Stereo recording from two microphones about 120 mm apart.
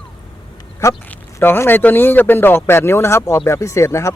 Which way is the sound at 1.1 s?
15° left (ahead or behind).